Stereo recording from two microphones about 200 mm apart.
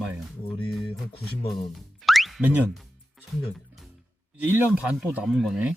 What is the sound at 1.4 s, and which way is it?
Speech, 25° left (ahead or behind).